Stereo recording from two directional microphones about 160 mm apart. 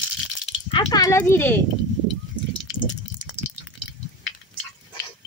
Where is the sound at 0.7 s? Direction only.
20° left (ahead or behind).